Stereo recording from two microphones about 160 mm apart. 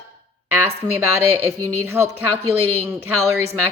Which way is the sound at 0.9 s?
15° right (ahead or behind).